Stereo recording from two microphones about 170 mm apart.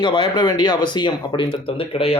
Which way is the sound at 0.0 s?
30° left (ahead or behind).